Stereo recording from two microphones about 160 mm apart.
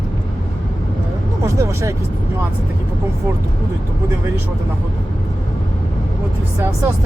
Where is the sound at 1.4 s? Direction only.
20° right (ahead or behind).